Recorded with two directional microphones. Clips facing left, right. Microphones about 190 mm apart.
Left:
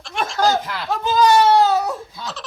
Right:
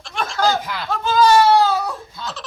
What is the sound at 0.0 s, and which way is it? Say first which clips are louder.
Snicker: left 1 dB; centre (ahead or behind).